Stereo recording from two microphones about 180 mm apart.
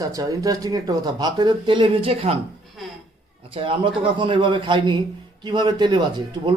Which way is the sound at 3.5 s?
30° right (ahead or behind).